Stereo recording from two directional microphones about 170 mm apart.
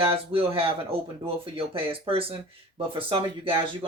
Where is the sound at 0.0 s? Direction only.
35° right (ahead or behind).